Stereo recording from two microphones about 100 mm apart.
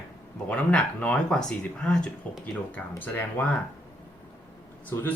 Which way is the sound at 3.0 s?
20° left (ahead or behind).